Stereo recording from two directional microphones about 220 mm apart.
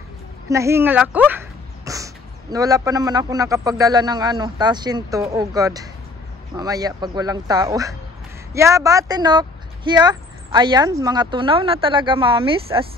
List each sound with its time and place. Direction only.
0.5 s a man's voice: 15° right (ahead or behind)